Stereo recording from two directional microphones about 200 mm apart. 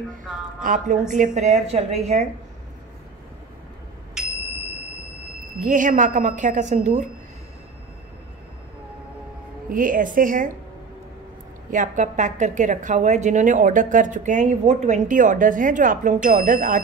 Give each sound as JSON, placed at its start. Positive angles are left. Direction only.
{"t": 0.6, "sound": "a woman's voice", "side_deg": -40}
{"t": 5.6, "sound": "a woman's voice", "side_deg": -40}
{"t": 9.7, "sound": "a woman's voice", "side_deg": -45}
{"t": 11.7, "sound": "a woman's voice", "side_deg": -40}